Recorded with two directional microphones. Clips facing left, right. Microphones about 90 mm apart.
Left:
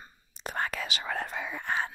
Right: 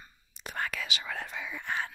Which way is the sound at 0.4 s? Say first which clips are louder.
Left 3 dB; 35° left (ahead or behind).